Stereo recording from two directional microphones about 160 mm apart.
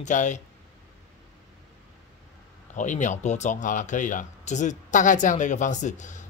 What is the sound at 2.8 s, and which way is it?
Speech, 50° left (ahead or behind).